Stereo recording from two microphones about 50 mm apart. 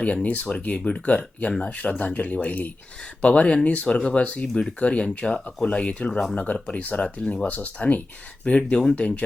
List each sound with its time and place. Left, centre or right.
0.0 s speech: left